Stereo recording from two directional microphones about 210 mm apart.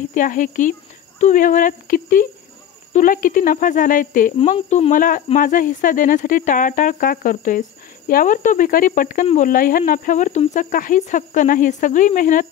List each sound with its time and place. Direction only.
0.1 s speech: 40° left (ahead or behind)